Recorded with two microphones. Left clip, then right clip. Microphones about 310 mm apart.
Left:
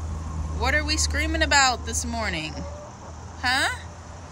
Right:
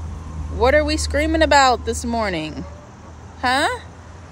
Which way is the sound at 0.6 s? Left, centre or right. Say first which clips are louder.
Right 8 dB; centre.